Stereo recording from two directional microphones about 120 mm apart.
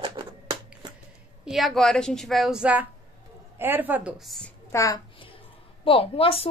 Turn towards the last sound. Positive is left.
turn(degrees=50)  # may be behind; listen again after turning